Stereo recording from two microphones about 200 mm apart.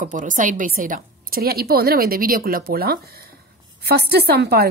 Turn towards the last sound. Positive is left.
turn(degrees=-50)  # may be behind; listen again after turning